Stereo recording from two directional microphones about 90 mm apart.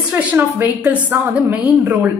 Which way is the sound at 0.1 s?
20° right (ahead or behind).